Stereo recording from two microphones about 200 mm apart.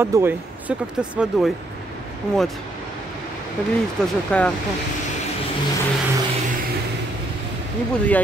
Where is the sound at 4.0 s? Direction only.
5° left (ahead or behind).